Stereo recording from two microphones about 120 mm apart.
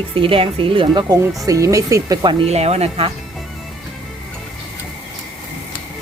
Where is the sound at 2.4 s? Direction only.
60° right (ahead or behind).